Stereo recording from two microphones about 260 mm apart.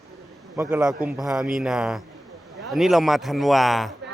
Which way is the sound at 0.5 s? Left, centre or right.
Centre.